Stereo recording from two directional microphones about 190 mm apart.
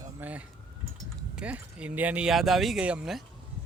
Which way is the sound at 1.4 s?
5° right (ahead or behind).